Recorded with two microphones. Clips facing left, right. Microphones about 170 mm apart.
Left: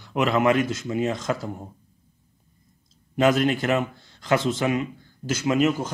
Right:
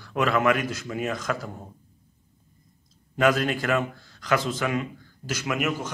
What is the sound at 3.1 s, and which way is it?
A man's voice, 25° left (ahead or behind).